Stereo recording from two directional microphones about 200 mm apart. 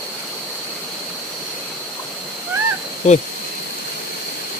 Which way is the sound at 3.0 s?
35° left (ahead or behind).